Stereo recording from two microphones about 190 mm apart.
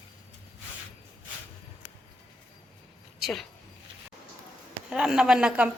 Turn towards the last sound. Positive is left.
turn(degrees=-5)  # may be behind; listen again after turning